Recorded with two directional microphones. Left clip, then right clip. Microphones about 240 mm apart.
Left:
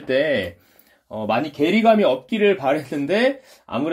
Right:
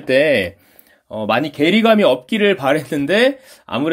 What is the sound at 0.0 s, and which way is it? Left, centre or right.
Speech, right.